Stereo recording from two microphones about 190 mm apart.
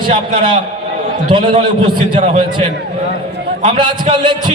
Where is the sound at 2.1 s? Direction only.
30° right (ahead or behind).